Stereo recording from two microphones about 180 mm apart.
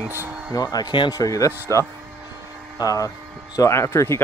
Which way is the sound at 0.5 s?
20° left (ahead or behind).